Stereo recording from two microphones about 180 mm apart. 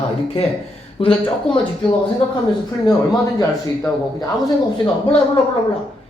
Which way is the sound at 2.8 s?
20° left (ahead or behind).